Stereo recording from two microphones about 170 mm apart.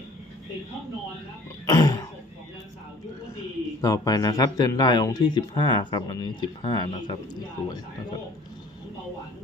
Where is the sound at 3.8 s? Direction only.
20° left (ahead or behind).